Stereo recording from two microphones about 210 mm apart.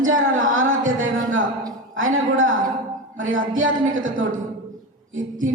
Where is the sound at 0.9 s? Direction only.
70° right (ahead or behind).